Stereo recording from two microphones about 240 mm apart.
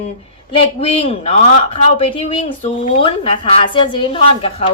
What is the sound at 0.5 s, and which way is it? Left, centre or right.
A woman's voice, left.